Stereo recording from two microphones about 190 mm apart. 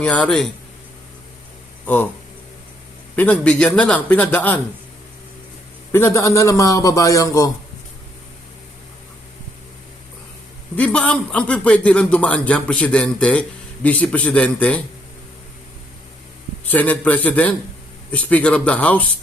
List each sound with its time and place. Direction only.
0.0 s a man's voice: 5° left (ahead or behind)
3.2 s a man's voice: 5° left (ahead or behind)
5.9 s a man's voice: 15° left (ahead or behind)
10.8 s a man's voice: 5° left (ahead or behind)
16.6 s a man's voice: 10° left (ahead or behind)